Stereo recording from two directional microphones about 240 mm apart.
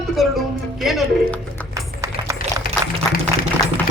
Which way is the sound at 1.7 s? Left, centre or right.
Centre.